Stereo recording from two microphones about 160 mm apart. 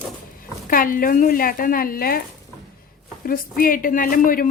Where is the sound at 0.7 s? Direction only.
60° left (ahead or behind).